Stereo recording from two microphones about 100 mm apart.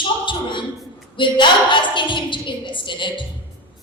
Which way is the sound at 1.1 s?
50° left (ahead or behind).